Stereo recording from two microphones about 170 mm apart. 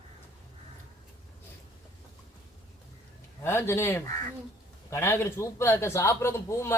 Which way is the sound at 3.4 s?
15° left (ahead or behind).